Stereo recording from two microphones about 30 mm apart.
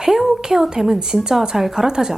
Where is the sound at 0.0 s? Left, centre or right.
Centre.